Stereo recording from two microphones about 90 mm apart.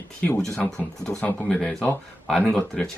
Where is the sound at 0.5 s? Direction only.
10° left (ahead or behind).